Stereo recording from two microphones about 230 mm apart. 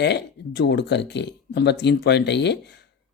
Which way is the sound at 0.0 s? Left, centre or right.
Left.